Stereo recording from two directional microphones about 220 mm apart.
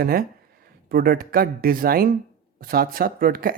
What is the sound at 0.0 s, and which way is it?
Speech, 45° right (ahead or behind).